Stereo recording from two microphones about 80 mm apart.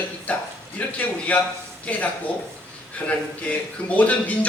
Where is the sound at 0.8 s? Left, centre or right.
Centre.